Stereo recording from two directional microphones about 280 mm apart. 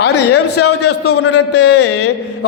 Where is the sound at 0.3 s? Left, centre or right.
Left.